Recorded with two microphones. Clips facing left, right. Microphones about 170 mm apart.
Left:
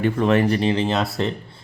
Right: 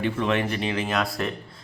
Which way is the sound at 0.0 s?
40° left (ahead or behind).